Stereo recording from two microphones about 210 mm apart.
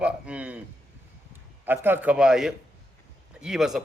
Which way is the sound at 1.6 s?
10° right (ahead or behind).